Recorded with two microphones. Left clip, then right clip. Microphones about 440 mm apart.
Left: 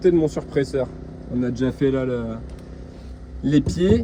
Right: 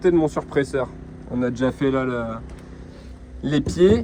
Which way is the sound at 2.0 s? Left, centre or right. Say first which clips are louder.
Even; right.